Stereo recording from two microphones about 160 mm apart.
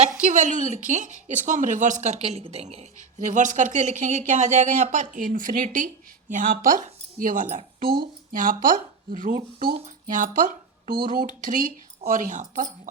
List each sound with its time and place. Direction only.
0.3 s a woman's voice: 50° right (ahead or behind)
7.9 s speech: 30° right (ahead or behind)
8.3 s speech: 60° right (ahead or behind)